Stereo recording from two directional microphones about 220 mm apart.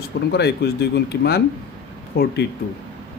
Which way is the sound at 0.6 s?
45° left (ahead or behind).